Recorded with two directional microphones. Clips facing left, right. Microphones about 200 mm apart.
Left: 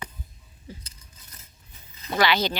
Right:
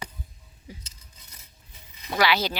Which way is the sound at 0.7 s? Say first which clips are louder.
Left 2 dB; 15° right (ahead or behind).